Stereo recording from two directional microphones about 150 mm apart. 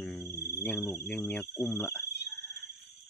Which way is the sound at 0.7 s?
15° left (ahead or behind).